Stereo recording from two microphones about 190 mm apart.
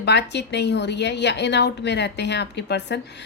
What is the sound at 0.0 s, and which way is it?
A woman's voice, 65° left (ahead or behind).